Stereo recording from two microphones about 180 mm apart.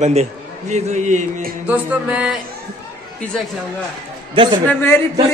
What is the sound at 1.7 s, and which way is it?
Music, 5° right (ahead or behind).